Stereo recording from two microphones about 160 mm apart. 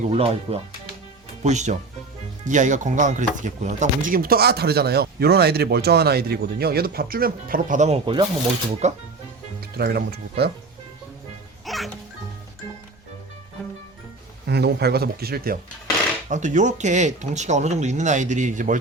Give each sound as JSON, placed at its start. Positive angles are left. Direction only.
{"t": 0.0, "sound": "speech", "side_deg": -40}
{"t": 8.0, "sound": "speech", "side_deg": -30}
{"t": 8.8, "sound": "speech", "side_deg": -45}
{"t": 9.7, "sound": "speech", "side_deg": -90}
{"t": 11.6, "sound": "music", "side_deg": 0}
{"t": 14.4, "sound": "speech", "side_deg": -90}
{"t": 16.3, "sound": "speech", "side_deg": -50}